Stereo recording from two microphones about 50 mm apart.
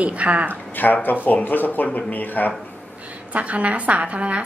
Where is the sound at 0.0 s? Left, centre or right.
Right.